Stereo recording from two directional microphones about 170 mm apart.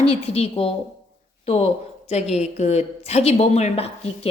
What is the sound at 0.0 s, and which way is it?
A woman's voice, 35° left (ahead or behind).